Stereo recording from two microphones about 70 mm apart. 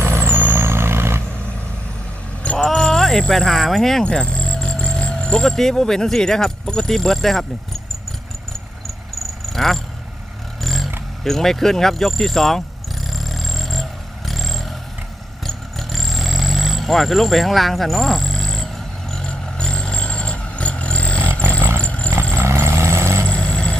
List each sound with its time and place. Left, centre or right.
0.0 s vehicle: right
2.6 s a sound: centre
4.0 s speech: centre
9.5 s speech: centre
10.6 s a sound: centre
11.2 s speech: centre
13.1 s vehicle: centre
22.1 s vehicle: right
23.3 s vehicle: centre